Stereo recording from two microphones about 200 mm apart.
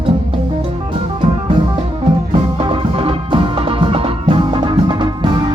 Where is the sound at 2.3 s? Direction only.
25° right (ahead or behind).